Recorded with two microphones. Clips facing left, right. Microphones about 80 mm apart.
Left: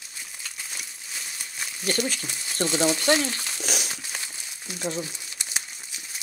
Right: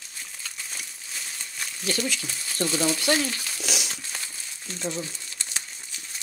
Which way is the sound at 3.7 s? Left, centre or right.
Left.